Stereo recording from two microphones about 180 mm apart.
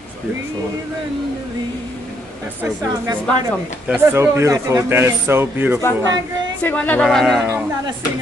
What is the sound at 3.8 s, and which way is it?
Speech, 10° right (ahead or behind).